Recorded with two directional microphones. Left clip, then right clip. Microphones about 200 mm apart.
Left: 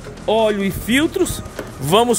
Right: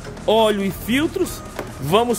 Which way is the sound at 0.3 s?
Centre (ahead or behind).